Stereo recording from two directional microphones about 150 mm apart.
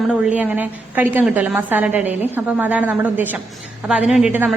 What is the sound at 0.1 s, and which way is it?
A woman's voice, 10° right (ahead or behind).